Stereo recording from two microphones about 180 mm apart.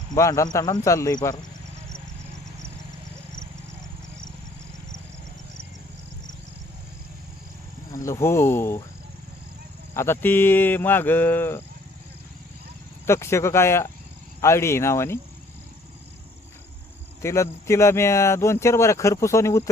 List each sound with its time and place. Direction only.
0.1 s speech: 20° left (ahead or behind)
7.9 s speech: 15° left (ahead or behind)
9.9 s speech: 15° left (ahead or behind)
13.1 s speech: 15° left (ahead or behind)
17.2 s speech: 15° left (ahead or behind)